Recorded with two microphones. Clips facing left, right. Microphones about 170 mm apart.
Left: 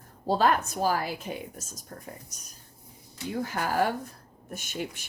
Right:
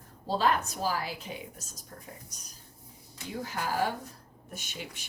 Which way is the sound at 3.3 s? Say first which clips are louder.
Left 4 dB; 55° left (ahead or behind).